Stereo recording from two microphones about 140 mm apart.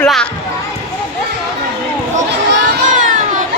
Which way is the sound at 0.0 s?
5° left (ahead or behind).